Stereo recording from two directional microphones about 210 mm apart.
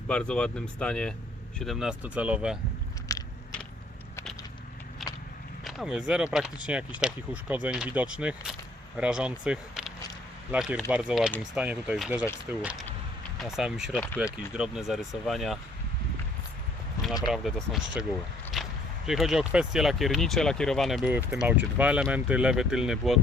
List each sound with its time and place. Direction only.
0.1 s speech: 5° left (ahead or behind)
3.1 s biting: 15° left (ahead or behind)
5.0 s vehicle: centre (ahead or behind)
5.6 s speech: centre (ahead or behind)
17.3 s speech: centre (ahead or behind)